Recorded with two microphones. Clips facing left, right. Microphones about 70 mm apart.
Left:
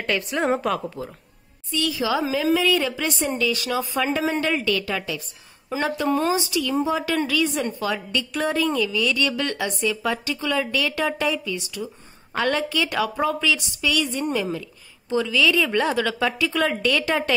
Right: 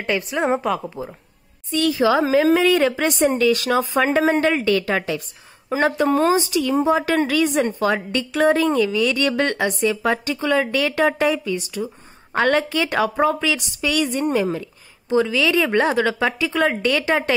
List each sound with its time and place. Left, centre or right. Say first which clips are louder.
0.0 s a woman's voice: right 2 dB; centre
1.7 s a woman's voice: right 6 dB; right
14.3 s a woman's voice: right 5 dB; right